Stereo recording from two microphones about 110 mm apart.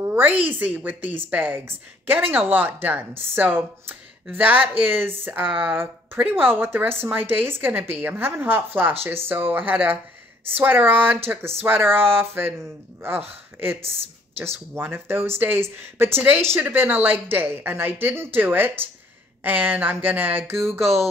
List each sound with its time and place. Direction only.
0.1 s a sound: 15° right (ahead or behind)
0.5 s a woman's voice: 15° right (ahead or behind)
13.7 s a woman's voice: 60° right (ahead or behind)
14.4 s a woman's voice: 25° right (ahead or behind)
20.8 s speech: centre (ahead or behind)